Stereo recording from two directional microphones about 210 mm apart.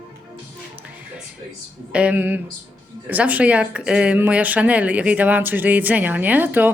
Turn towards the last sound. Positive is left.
turn(degrees=-10)  # may be behind; listen again after turning